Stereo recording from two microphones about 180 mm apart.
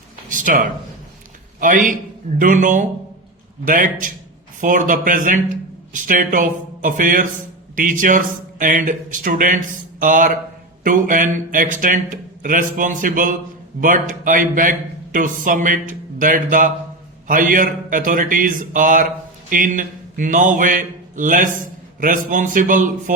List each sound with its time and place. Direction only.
0.3 s a man's voice: 45° right (ahead or behind)